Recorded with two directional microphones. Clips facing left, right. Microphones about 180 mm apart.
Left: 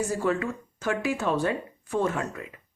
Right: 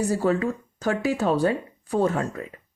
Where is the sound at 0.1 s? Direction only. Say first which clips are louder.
Right 4 dB; 35° right (ahead or behind).